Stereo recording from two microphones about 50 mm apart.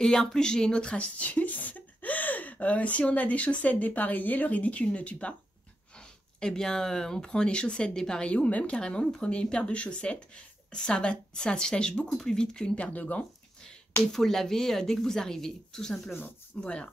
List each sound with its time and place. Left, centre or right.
0.0 s speech: centre
5.9 s speech: centre; by 13.2 s left
14.1 s speech: centre
16.6 s speech: left